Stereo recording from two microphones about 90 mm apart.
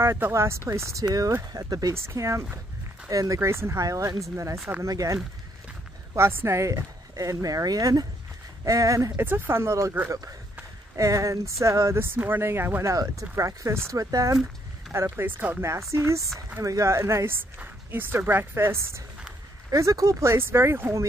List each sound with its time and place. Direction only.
0.0 s speech: 30° right (ahead or behind)
6.1 s speech: 25° right (ahead or behind)
9.2 s speech: 25° right (ahead or behind)
11.0 s speech: 35° right (ahead or behind)
14.9 s speech: 30° right (ahead or behind)
15.9 s speech: 35° right (ahead or behind)